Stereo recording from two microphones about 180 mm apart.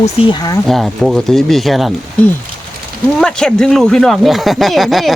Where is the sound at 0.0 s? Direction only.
30° left (ahead or behind).